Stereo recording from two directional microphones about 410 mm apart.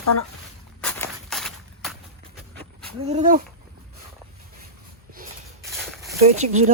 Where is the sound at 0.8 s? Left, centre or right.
Centre.